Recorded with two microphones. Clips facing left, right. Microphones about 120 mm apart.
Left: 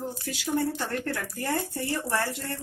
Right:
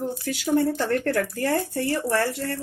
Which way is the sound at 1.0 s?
60° right (ahead or behind).